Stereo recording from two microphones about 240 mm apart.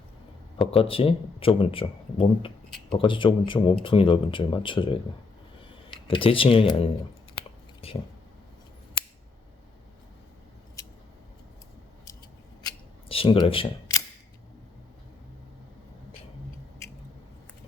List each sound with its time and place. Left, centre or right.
0.6 s speech: left
7.3 s a sound: left
12.6 s camera: left